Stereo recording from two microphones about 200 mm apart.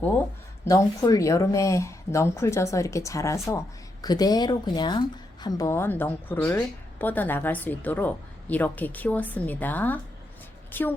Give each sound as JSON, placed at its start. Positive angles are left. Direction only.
{"t": 0.6, "sound": "a woman's voice", "side_deg": 15}